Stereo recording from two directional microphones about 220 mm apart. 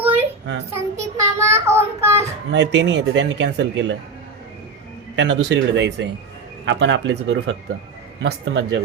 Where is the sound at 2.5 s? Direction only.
55° right (ahead or behind).